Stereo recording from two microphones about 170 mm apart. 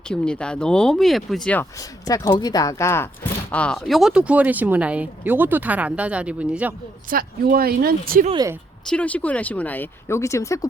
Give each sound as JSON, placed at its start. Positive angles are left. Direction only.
{"t": 0.1, "sound": "speech", "side_deg": 5}
{"t": 1.8, "sound": "a woman's voice", "side_deg": 20}
{"t": 7.1, "sound": "speech", "side_deg": -60}
{"t": 8.9, "sound": "speech", "side_deg": 10}